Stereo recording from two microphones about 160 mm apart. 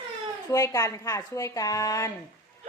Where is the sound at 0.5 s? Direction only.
20° left (ahead or behind).